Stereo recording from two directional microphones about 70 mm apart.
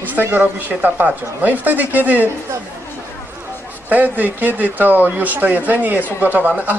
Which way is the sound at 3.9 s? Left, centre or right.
Right.